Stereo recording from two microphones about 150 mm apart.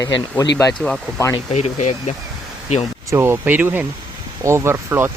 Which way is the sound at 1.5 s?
50° left (ahead or behind).